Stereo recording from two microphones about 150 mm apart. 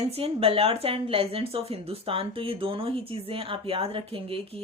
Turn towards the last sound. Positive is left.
turn(degrees=-40)  # may be behind; listen again after turning